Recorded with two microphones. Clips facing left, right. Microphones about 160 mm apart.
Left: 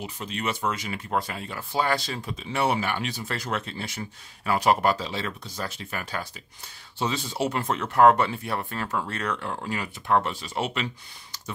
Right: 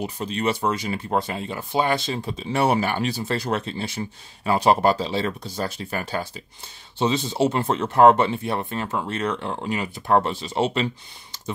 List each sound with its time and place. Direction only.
0.0 s speech: 35° right (ahead or behind)
10.0 s speech: 35° right (ahead or behind)